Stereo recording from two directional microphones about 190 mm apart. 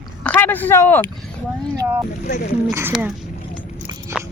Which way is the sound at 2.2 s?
50° left (ahead or behind).